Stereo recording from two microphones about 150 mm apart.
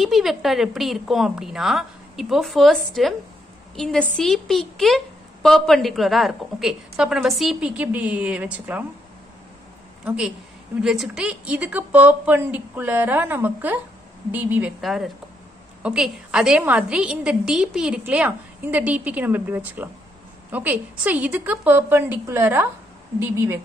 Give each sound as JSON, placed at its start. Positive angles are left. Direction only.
{"t": 0.0, "sound": "a woman's voice", "side_deg": 0}
{"t": 10.0, "sound": "a woman's voice", "side_deg": -5}
{"t": 14.8, "sound": "a woman's voice", "side_deg": 0}